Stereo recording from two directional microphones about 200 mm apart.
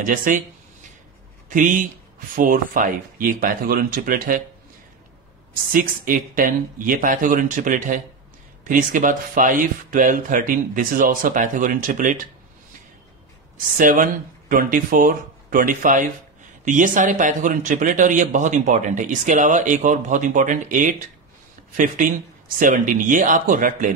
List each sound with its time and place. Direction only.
0.0 s speech: 40° right (ahead or behind)
1.5 s speech: 40° right (ahead or behind)
5.5 s a man's voice: 45° right (ahead or behind)
13.7 s a man's voice: 40° right (ahead or behind)